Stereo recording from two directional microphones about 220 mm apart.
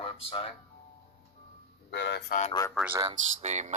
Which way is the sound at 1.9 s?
50° left (ahead or behind).